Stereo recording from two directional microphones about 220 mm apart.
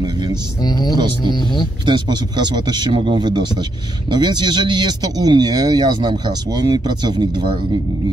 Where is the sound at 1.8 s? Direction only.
20° right (ahead or behind).